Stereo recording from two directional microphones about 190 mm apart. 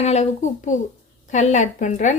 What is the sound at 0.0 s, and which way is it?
Speech, 35° left (ahead or behind).